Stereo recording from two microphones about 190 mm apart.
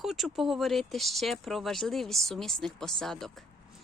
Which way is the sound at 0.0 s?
Centre (ahead or behind).